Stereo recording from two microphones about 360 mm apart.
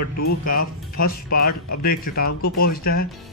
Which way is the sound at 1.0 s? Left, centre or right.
Left.